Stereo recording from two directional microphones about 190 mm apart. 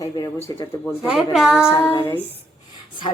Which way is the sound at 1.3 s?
5° right (ahead or behind).